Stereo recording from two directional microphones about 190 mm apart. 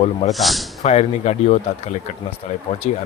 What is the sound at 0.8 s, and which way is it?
A man's voice, 35° left (ahead or behind).